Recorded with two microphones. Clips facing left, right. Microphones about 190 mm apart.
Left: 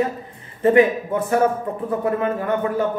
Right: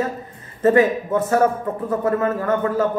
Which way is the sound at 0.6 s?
15° left (ahead or behind).